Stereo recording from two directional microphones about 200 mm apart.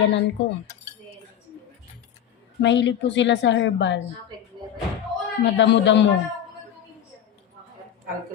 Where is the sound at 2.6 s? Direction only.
60° left (ahead or behind).